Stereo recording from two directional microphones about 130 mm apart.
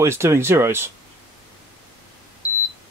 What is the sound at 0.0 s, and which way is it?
Speech, 20° right (ahead or behind).